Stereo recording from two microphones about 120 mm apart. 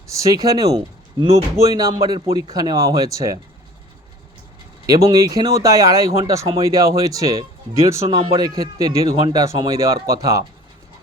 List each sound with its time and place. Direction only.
0.1 s speech: 25° right (ahead or behind)
4.9 s speech: 30° right (ahead or behind)